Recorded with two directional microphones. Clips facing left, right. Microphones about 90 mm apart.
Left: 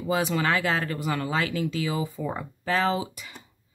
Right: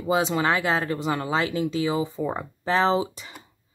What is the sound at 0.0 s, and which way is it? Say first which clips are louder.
Speech: right 3 dB; 20° right (ahead or behind).